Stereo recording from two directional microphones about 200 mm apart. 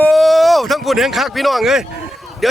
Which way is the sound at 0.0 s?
Centre (ahead or behind).